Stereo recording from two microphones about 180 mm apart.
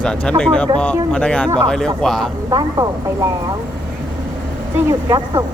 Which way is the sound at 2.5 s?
20° right (ahead or behind).